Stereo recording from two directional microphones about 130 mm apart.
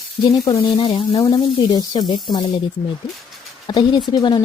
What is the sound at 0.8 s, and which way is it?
Speech, 40° left (ahead or behind).